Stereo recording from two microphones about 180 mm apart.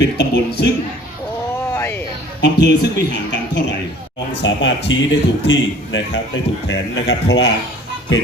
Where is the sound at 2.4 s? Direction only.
70° left (ahead or behind).